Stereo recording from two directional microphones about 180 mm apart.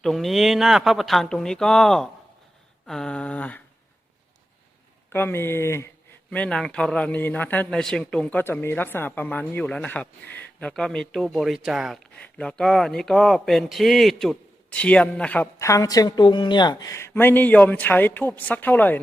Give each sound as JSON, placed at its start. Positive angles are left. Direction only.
{"t": 0.0, "sound": "a man's voice", "side_deg": 0}
{"t": 5.1, "sound": "a man's voice", "side_deg": 10}